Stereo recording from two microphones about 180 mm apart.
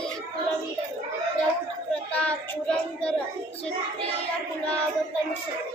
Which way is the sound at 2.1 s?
5° left (ahead or behind).